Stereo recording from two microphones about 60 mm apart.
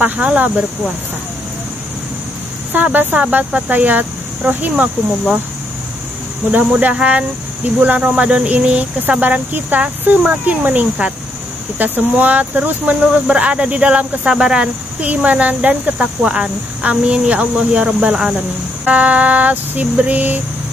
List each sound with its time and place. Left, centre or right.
0.0 s speech: right
2.7 s speech: right
6.5 s speech: right
18.9 s speech: right